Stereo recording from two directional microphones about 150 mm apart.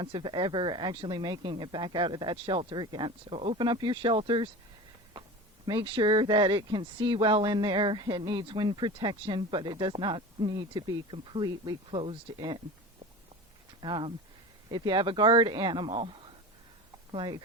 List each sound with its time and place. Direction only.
0.0 s speech: 35° right (ahead or behind)
5.6 s speech: 35° right (ahead or behind)
13.8 s speech: 35° right (ahead or behind)